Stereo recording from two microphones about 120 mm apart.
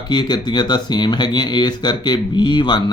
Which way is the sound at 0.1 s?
40° left (ahead or behind).